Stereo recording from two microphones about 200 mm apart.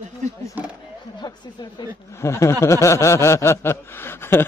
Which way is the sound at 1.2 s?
20° left (ahead or behind).